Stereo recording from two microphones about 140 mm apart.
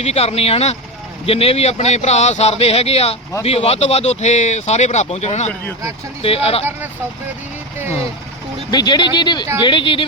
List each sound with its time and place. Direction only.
0.0 s speech: 50° left (ahead or behind)
8.7 s speech: 30° left (ahead or behind)